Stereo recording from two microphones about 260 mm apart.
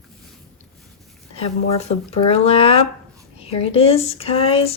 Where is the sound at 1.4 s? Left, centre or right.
Left.